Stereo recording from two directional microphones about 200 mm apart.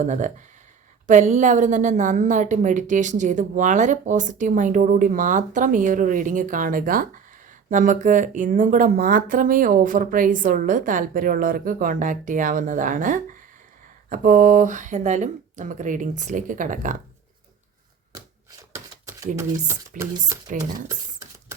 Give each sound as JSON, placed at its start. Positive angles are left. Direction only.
{"t": 0.0, "sound": "a woman's voice", "side_deg": -40}
{"t": 18.7, "sound": "a sound", "side_deg": -15}
{"t": 19.9, "sound": "speech", "side_deg": -40}
{"t": 20.3, "sound": "speech", "side_deg": -15}